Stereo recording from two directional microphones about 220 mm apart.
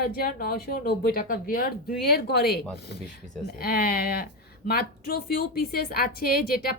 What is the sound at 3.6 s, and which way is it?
A woman's voice, 45° left (ahead or behind).